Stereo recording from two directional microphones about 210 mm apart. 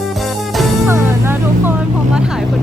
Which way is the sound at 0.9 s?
10° right (ahead or behind).